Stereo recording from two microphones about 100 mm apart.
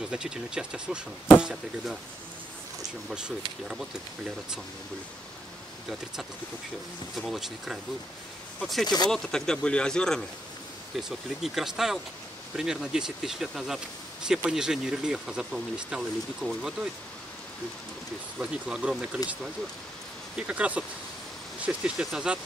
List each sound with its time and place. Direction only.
0.1 s speech: 10° right (ahead or behind)
3.1 s speech: 5° right (ahead or behind)
7.2 s speech: centre (ahead or behind)
8.8 s speech: 45° left (ahead or behind)
9.1 s speech: 5° left (ahead or behind)
11.1 s speech: 5° right (ahead or behind)
18.4 s speech: 10° right (ahead or behind)